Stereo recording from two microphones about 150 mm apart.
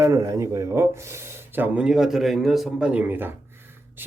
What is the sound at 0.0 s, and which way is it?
Speech, 20° right (ahead or behind).